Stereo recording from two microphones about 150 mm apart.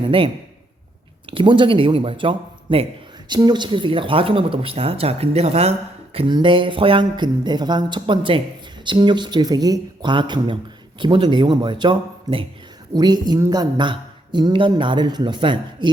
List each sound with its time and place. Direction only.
0.0 s a man's voice: 35° right (ahead or behind)
1.3 s speech: 35° right (ahead or behind)
6.1 s speech: 30° right (ahead or behind)